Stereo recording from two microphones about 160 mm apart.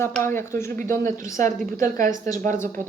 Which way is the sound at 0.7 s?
60° right (ahead or behind).